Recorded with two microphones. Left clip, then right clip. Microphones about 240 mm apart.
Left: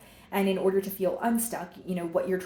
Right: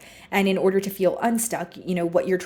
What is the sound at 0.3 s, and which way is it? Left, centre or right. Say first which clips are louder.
Speech: right 5 dB; right.